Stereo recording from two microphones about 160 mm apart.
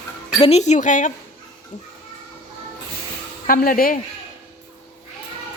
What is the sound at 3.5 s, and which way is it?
Speech, 65° left (ahead or behind).